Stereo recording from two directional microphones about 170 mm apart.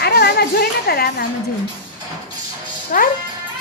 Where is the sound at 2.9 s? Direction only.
55° left (ahead or behind).